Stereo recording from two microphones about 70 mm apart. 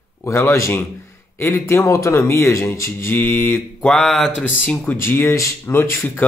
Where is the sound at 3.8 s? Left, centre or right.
Centre.